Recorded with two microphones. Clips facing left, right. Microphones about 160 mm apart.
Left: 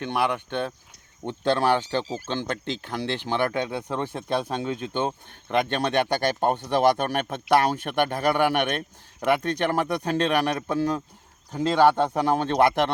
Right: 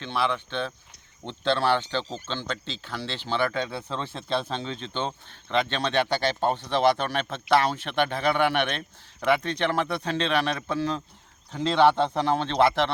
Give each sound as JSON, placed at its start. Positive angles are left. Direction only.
{"t": 0.0, "sound": "speech", "side_deg": 15}
{"t": 0.3, "sound": "speech", "side_deg": 50}
{"t": 1.2, "sound": "speech", "side_deg": 15}